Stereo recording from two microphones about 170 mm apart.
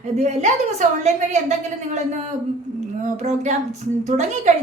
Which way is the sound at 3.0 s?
40° right (ahead or behind).